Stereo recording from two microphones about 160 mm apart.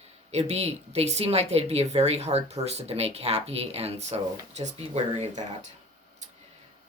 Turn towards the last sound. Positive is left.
turn(degrees=-45)  # may be behind; listen again after turning